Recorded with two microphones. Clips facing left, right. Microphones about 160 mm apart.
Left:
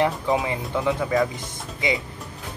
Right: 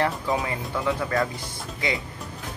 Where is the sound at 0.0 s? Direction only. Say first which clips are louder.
Left 3 dB; 20° left (ahead or behind).